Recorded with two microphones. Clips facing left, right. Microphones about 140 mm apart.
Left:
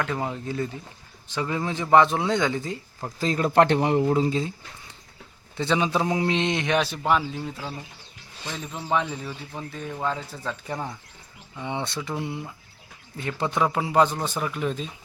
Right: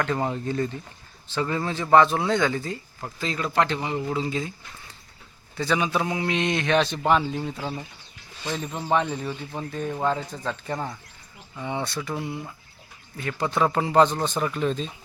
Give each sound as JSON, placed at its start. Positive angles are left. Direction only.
{"t": 0.0, "sound": "speech", "side_deg": 5}
{"t": 3.2, "sound": "a man's voice", "side_deg": 40}
{"t": 3.5, "sound": "a man's voice", "side_deg": 60}
{"t": 5.5, "sound": "a man's voice", "side_deg": 25}
{"t": 6.7, "sound": "speech", "side_deg": 5}
{"t": 8.8, "sound": "speech", "side_deg": 0}
{"t": 11.6, "sound": "a man's voice", "side_deg": 20}
{"t": 13.7, "sound": "speech", "side_deg": 10}